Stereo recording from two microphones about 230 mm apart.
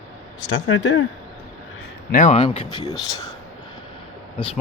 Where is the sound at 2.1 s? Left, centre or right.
Left.